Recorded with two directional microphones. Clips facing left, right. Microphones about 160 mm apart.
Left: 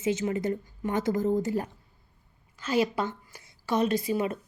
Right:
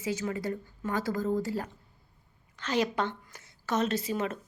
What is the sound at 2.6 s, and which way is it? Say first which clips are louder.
A woman's voice: left 2 dB; 10° left (ahead or behind).